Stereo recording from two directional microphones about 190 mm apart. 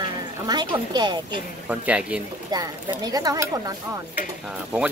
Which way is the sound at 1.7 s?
5° right (ahead or behind).